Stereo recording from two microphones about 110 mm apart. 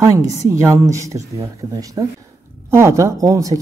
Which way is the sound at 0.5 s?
30° right (ahead or behind).